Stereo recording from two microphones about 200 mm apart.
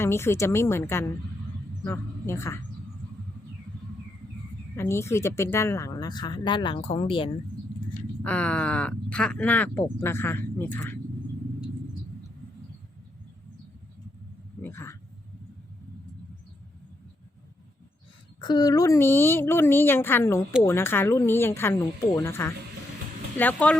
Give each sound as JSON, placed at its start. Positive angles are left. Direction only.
{"t": 0.0, "sound": "a woman's voice", "side_deg": 15}
{"t": 4.8, "sound": "speech", "side_deg": 15}
{"t": 8.2, "sound": "speech", "side_deg": 5}
{"t": 14.6, "sound": "a sound", "side_deg": 15}
{"t": 18.3, "sound": "speech", "side_deg": 20}